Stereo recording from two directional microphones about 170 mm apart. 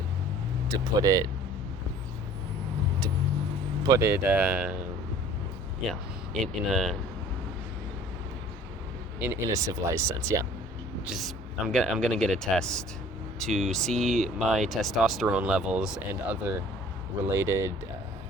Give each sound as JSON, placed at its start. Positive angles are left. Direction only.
{"t": 0.7, "sound": "speech", "side_deg": -20}
{"t": 3.8, "sound": "speech", "side_deg": -15}
{"t": 5.9, "sound": "speech", "side_deg": 0}
{"t": 9.1, "sound": "speech", "side_deg": -15}
{"t": 11.0, "sound": "speech", "side_deg": -5}